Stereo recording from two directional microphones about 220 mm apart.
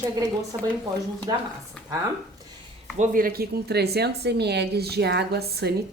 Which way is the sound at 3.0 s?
40° right (ahead or behind).